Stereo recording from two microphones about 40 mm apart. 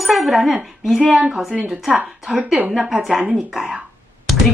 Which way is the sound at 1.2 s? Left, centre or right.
Right.